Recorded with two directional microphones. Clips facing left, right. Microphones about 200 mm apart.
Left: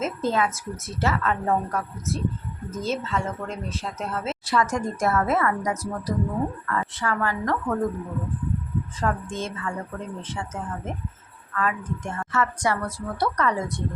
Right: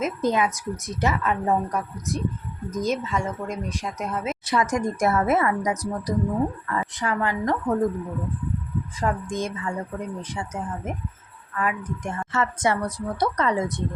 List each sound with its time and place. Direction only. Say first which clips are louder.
0.0 s speech: right 2 dB; 15° right (ahead or behind)
9.0 s a woman's voice: right 2 dB; 15° right (ahead or behind)